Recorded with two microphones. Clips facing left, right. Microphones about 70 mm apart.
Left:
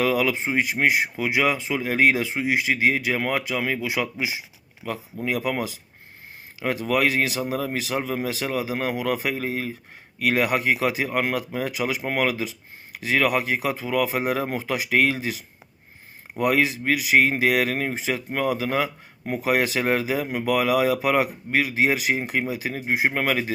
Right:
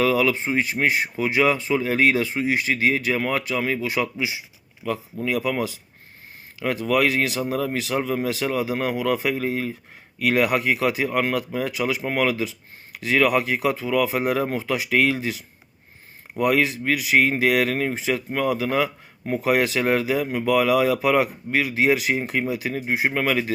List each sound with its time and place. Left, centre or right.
0.0 s speech: centre
1.1 s speech: centre
16.4 s speech: centre